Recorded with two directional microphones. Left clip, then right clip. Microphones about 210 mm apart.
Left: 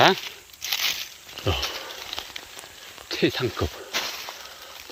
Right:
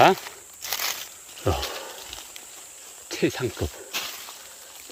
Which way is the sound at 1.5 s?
20° right (ahead or behind).